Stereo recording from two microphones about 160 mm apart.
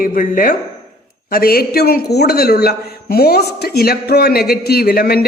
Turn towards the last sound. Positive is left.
turn(degrees=75)  # may be behind; listen again after turning